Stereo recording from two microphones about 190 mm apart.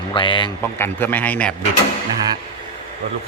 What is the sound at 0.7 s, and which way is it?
Speech, 10° left (ahead or behind).